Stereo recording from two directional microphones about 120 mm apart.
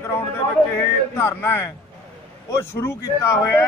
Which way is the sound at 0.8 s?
20° left (ahead or behind).